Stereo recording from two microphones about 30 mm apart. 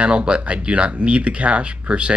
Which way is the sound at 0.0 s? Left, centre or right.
Right.